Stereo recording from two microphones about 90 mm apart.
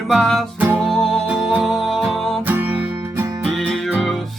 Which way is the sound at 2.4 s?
20° right (ahead or behind).